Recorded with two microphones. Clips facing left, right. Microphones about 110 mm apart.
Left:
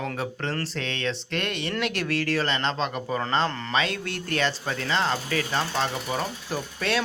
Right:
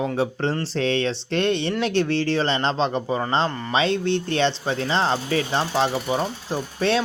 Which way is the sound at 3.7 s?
30° right (ahead or behind).